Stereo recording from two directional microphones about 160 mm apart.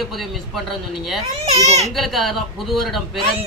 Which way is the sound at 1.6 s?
45° right (ahead or behind).